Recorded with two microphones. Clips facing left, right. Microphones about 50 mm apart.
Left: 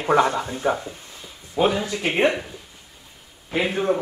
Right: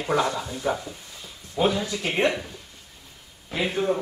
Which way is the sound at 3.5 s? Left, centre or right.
Left.